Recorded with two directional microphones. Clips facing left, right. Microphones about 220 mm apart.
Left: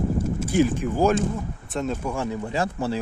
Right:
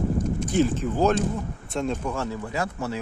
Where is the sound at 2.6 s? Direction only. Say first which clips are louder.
Left 4 dB; 30° left (ahead or behind).